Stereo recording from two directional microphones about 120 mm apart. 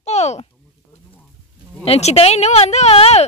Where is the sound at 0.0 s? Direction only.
65° left (ahead or behind).